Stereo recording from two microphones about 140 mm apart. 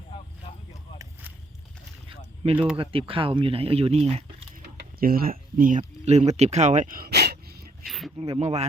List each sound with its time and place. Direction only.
2.0 s boat: 40° right (ahead or behind)
2.7 s speech: 40° right (ahead or behind)
4.9 s speech: 90° right
7.9 s a sound: centre (ahead or behind)
8.2 s speech: 45° right (ahead or behind)